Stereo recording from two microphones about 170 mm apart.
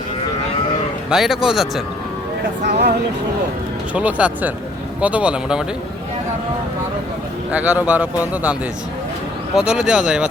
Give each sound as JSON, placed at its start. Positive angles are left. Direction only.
{"t": 1.1, "sound": "speech", "side_deg": 0}
{"t": 2.6, "sound": "speech", "side_deg": -80}
{"t": 3.9, "sound": "a man's voice", "side_deg": -10}
{"t": 7.5, "sound": "a man's voice", "side_deg": -5}
{"t": 9.6, "sound": "speech", "side_deg": -5}